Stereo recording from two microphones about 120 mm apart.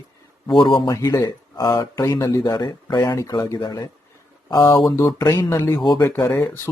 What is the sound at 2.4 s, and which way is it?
Speech, 35° left (ahead or behind).